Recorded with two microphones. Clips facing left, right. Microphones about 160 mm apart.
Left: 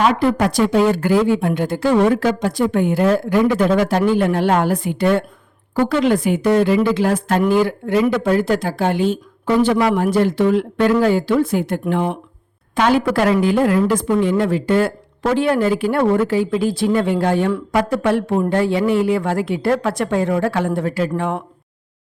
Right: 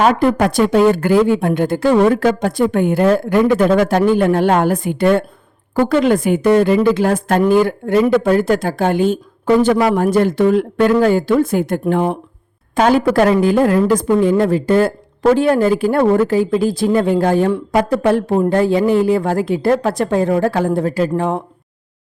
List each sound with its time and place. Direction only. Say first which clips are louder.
0.0 s a woman's voice: right 3 dB; 45° right (ahead or behind)